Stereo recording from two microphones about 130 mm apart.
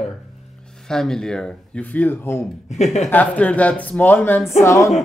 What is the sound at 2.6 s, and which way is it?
Speech, 60° left (ahead or behind).